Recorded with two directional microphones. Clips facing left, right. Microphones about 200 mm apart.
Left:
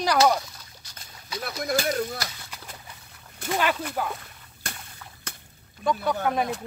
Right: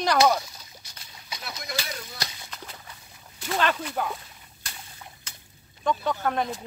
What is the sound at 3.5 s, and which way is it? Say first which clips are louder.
Speech: left 1 dB; 10° left (ahead or behind).